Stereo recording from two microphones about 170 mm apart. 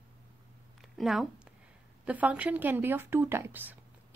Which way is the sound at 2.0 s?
10° right (ahead or behind).